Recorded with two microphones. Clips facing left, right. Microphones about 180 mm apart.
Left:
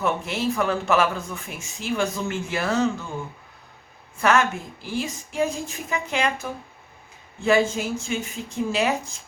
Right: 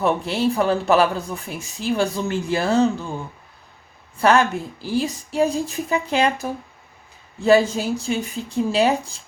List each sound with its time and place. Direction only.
0.0 s speech: 35° right (ahead or behind)
4.2 s speech: 35° right (ahead or behind)